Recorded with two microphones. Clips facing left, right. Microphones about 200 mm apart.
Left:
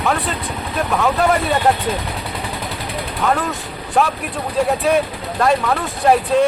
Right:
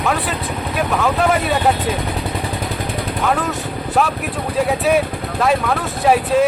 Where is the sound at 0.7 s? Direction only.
Centre (ahead or behind).